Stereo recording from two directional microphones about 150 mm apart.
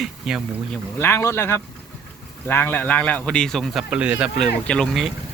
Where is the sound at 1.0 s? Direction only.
15° left (ahead or behind); by 4.5 s 5° right (ahead or behind).